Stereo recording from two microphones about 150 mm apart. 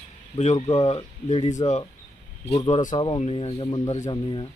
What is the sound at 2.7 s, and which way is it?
Speech, 60° left (ahead or behind).